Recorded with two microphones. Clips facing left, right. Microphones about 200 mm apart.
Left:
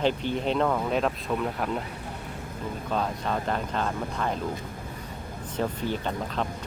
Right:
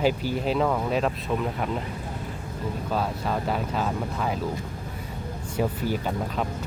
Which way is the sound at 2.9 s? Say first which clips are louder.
Even; 5° right (ahead or behind).